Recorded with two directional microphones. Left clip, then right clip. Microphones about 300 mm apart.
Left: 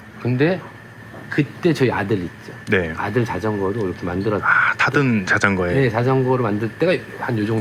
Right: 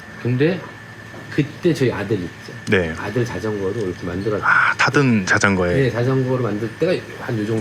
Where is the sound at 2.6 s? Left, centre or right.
Centre.